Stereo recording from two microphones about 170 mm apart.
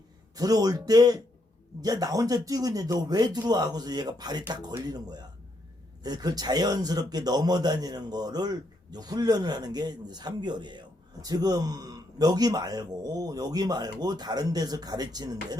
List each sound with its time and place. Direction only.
0.3 s speech: 20° right (ahead or behind)